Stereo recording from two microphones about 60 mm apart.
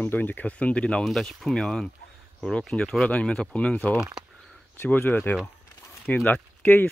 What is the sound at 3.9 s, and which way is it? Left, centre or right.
Speech, centre.